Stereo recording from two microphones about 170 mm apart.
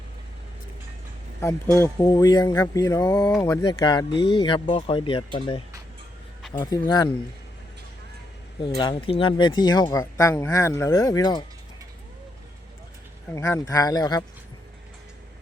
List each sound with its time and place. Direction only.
1.8 s speech: 20° left (ahead or behind)
8.6 s speech: 30° left (ahead or behind)
13.3 s speech: 20° left (ahead or behind)